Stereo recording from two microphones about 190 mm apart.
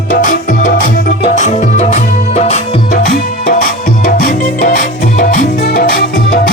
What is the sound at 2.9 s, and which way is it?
Music, 50° left (ahead or behind).